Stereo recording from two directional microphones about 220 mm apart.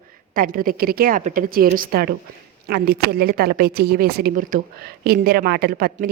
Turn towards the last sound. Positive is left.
turn(degrees=-40)  # may be behind; listen again after turning